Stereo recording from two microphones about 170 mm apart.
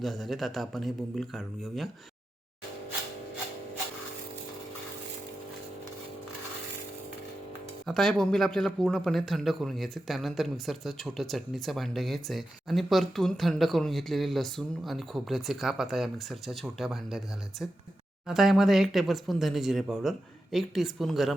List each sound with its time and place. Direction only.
0.0 s speech: centre (ahead or behind)
7.9 s speech: 5° left (ahead or behind)